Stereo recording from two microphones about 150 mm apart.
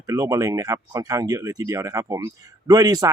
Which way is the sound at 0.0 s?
25° right (ahead or behind).